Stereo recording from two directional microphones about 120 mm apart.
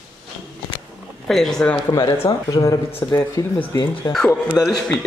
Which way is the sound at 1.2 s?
5° left (ahead or behind).